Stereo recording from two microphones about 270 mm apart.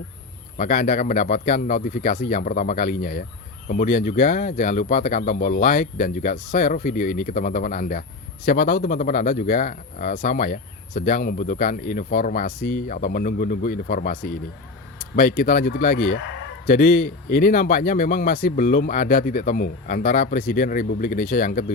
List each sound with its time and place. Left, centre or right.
0.6 s speech: left